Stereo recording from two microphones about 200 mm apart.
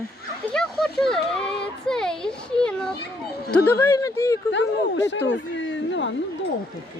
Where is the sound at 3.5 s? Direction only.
10° left (ahead or behind).